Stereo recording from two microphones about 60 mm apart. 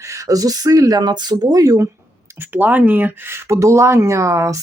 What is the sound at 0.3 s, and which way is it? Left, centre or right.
Speech, right.